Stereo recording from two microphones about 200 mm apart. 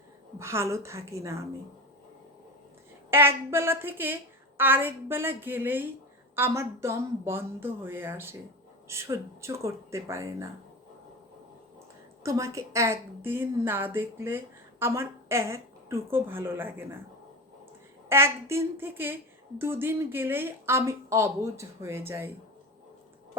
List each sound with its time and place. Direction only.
0.3 s a woman's voice: 15° right (ahead or behind)
3.1 s a woman's voice: 10° right (ahead or behind)
12.2 s a woman's voice: 15° right (ahead or behind)
18.1 s a woman's voice: 15° right (ahead or behind)